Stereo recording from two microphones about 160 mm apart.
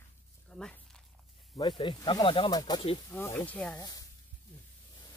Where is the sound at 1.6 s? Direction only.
30° left (ahead or behind).